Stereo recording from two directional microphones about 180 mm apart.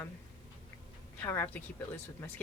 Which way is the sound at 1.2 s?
10° left (ahead or behind).